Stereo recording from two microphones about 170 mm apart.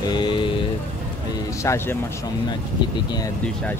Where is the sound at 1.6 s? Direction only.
15° left (ahead or behind).